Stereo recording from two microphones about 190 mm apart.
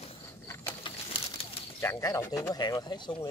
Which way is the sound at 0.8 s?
25° left (ahead or behind).